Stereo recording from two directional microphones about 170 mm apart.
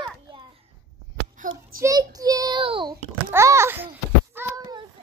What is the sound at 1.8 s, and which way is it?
A child's voice, 20° right (ahead or behind).